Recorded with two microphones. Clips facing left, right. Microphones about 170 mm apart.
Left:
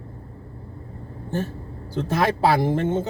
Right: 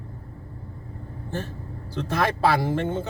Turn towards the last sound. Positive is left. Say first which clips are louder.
# left 4 dB
turn(degrees=20)  # may be behind; listen again after turning